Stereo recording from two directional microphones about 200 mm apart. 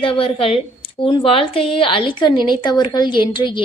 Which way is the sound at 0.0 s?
25° left (ahead or behind).